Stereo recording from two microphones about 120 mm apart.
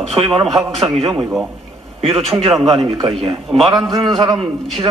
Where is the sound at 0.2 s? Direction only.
50° right (ahead or behind).